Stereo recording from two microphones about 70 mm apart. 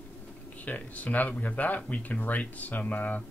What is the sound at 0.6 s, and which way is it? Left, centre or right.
Speech, left.